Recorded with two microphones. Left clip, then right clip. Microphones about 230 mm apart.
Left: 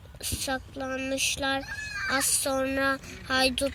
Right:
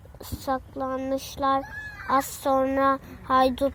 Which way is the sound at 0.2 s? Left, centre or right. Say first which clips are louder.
Right 1 dB; right.